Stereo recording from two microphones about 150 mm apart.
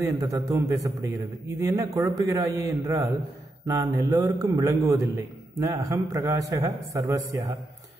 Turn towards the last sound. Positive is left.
turn(degrees=-20)  # may be behind; listen again after turning